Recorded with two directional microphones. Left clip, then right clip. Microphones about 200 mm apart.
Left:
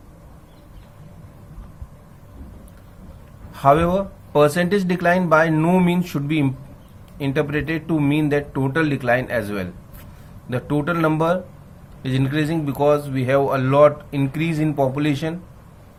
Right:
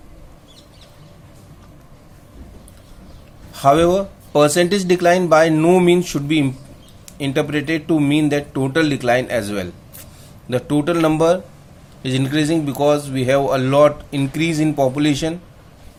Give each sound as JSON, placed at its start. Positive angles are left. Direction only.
{"t": 3.5, "sound": "speech", "side_deg": -40}